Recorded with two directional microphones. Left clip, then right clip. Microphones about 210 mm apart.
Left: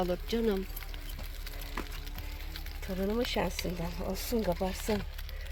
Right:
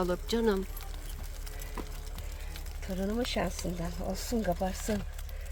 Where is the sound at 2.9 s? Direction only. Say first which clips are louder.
Left 1 dB; 20° left (ahead or behind).